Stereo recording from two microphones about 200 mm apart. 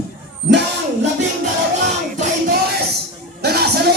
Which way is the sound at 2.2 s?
45° right (ahead or behind).